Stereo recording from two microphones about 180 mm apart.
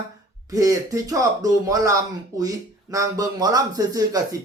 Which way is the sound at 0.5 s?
20° right (ahead or behind).